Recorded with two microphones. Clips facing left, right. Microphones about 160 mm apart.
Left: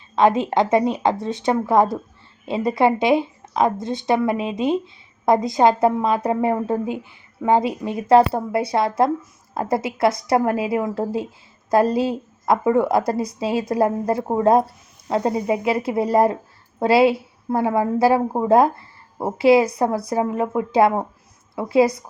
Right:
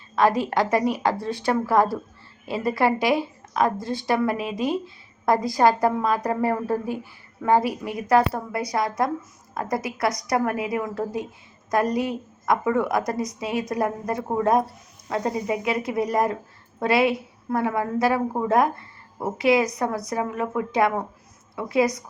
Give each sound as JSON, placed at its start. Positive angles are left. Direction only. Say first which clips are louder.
{"t": 0.2, "sound": "a woman's voice", "louder": "left 4 dB", "side_deg": 20}